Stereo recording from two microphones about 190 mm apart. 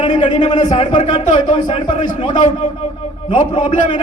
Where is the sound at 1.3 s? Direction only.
25° left (ahead or behind).